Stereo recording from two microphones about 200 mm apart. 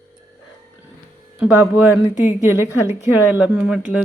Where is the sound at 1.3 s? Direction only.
5° right (ahead or behind).